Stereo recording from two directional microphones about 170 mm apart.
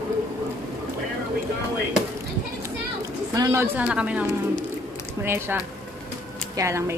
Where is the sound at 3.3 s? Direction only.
20° right (ahead or behind).